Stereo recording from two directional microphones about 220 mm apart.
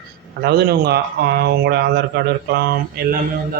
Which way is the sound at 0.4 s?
45° right (ahead or behind).